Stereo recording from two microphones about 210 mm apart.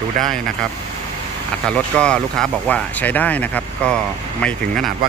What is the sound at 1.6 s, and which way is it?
Speech, 5° left (ahead or behind).